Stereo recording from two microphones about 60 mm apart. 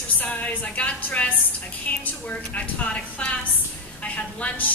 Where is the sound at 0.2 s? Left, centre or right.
Left.